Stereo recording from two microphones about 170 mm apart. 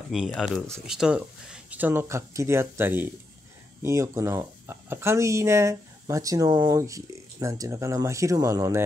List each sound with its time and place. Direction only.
0.1 s speech: centre (ahead or behind); by 8.8 s 20° right (ahead or behind)